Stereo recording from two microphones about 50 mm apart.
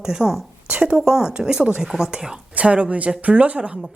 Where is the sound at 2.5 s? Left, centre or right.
Right.